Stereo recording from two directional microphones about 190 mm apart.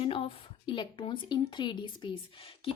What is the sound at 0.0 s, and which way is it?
A woman's voice, 30° left (ahead or behind).